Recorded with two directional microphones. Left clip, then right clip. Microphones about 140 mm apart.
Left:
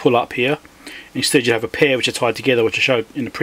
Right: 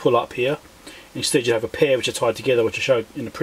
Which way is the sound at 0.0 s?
25° left (ahead or behind).